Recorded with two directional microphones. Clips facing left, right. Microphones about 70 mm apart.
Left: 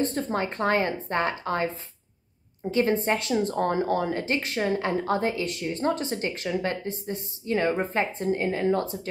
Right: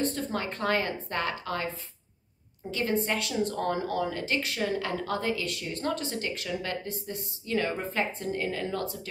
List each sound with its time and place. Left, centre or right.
0.0 s speech: left
2.7 s speech: left